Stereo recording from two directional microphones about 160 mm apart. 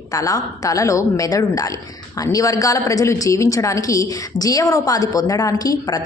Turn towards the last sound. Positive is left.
turn(degrees=25)  # may be behind; listen again after turning